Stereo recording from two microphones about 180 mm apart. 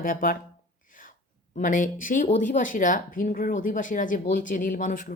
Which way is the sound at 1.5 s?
45° left (ahead or behind).